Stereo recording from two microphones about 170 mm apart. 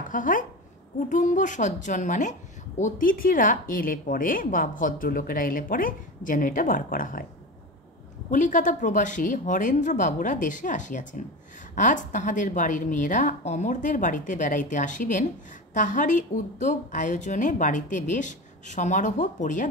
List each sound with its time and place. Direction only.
0.1 s a woman's voice: 50° left (ahead or behind)
8.3 s a woman's voice: 50° left (ahead or behind)